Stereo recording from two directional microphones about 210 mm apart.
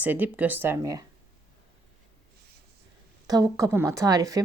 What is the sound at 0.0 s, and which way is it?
Speech, 10° right (ahead or behind).